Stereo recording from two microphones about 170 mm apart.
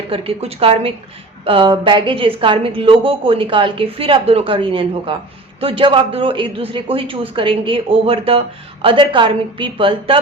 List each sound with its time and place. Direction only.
0.1 s a man's voice: 35° right (ahead or behind)